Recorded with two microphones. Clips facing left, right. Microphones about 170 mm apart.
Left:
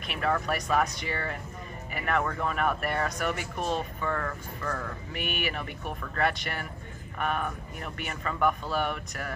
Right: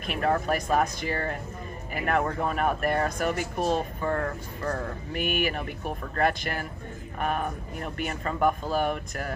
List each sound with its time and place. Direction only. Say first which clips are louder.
0.0 s speech: right 3 dB; 40° right (ahead or behind)